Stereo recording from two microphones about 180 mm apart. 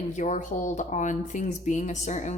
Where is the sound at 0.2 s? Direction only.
40° left (ahead or behind).